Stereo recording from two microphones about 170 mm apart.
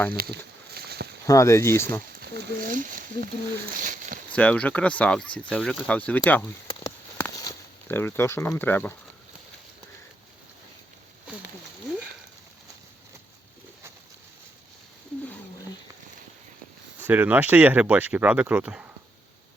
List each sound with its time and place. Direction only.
0.2 s a sound: 70° right (ahead or behind)
1.3 s speech: 15° left (ahead or behind)
2.1 s speech: 60° right (ahead or behind)
3.8 s a sound: 55° right (ahead or behind)
4.3 s speech: 10° left (ahead or behind)
17.0 s speech: 10° right (ahead or behind)